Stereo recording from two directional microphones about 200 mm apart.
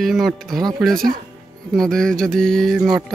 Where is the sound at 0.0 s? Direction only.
Centre (ahead or behind).